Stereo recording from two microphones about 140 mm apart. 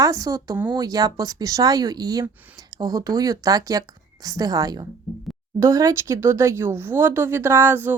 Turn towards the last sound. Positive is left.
turn(degrees=-15)  # may be behind; listen again after turning